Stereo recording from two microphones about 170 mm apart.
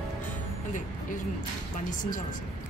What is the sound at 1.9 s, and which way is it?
Speech, 50° left (ahead or behind).